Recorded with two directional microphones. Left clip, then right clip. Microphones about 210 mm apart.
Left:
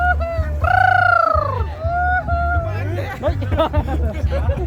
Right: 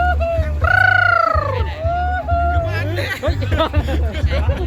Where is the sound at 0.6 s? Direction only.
55° left (ahead or behind).